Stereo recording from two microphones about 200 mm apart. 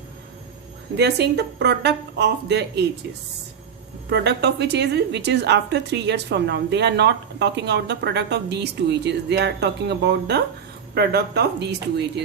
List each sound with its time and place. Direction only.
0.9 s a woman's voice: 55° right (ahead or behind)
4.1 s a woman's voice: 55° right (ahead or behind)